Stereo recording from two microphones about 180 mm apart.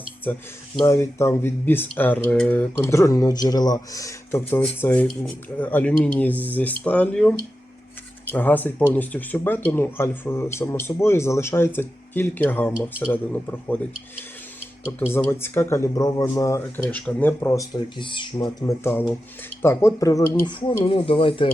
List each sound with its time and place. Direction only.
0.3 s speech: 10° left (ahead or behind)
15.1 s speech: 15° left (ahead or behind); by 21.5 s 30° left (ahead or behind)